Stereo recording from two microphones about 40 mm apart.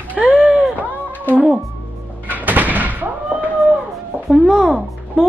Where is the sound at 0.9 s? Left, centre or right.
Right.